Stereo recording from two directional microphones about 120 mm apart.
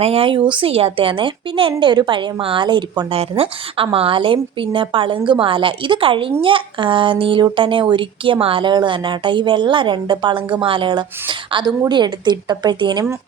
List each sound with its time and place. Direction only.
0.0 s a woman's voice: 55° right (ahead or behind); by 3.1 s 35° right (ahead or behind)
3.1 s a woman's voice: 55° right (ahead or behind); by 13.1 s 35° right (ahead or behind)